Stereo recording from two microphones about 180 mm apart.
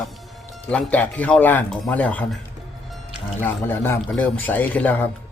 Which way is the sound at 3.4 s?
10° left (ahead or behind).